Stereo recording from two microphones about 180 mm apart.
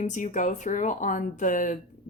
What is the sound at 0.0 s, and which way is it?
Speech, 45° left (ahead or behind).